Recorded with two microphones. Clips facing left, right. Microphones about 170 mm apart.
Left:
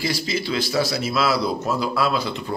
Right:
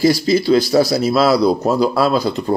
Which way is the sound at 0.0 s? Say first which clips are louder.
Right 11 dB; 40° right (ahead or behind).